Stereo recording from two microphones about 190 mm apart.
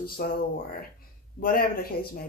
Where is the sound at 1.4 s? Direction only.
50° left (ahead or behind).